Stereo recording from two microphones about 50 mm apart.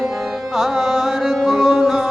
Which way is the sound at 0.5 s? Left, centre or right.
Centre.